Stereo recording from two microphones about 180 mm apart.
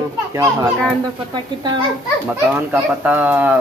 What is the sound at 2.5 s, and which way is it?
A child's voice, 10° right (ahead or behind).